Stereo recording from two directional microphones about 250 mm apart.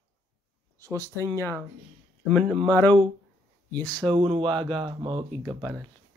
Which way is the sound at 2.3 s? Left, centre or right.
Centre.